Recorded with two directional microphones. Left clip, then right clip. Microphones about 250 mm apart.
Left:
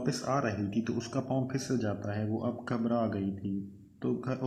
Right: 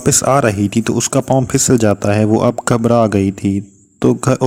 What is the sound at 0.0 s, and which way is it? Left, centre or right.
Speech, right.